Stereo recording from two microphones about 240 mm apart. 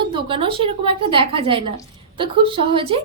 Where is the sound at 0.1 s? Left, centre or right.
Right.